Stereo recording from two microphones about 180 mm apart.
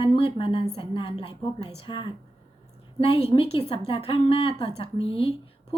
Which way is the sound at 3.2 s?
35° left (ahead or behind).